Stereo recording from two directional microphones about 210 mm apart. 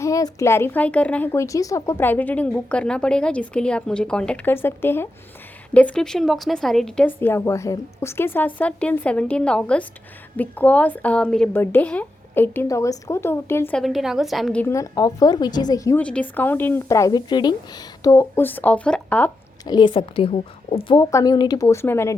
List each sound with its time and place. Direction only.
0.0 s a woman's voice: 15° left (ahead or behind)
19.6 s a woman's voice: 20° left (ahead or behind)